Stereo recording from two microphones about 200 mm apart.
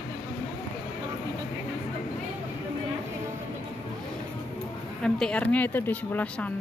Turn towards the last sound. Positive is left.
turn(degrees=5)  # may be behind; listen again after turning